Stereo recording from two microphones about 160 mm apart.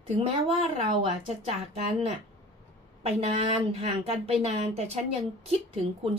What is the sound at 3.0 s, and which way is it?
A woman's voice, 40° right (ahead or behind).